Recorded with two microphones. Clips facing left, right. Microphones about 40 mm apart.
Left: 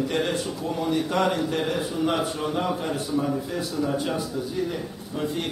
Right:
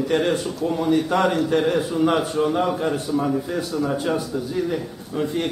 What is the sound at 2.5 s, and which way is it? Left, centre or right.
A man's voice, centre.